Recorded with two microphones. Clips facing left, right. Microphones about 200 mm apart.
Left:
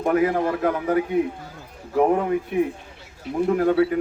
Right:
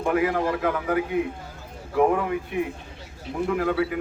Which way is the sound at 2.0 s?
40° left (ahead or behind).